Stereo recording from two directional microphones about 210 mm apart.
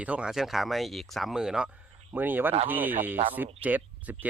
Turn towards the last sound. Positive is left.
turn(degrees=-10)  # may be behind; listen again after turning